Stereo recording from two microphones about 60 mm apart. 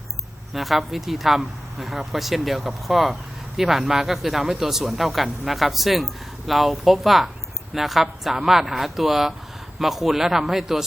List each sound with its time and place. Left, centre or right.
0.5 s speech: centre